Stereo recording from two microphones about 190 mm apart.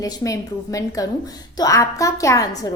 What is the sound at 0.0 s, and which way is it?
A woman's voice, 15° left (ahead or behind).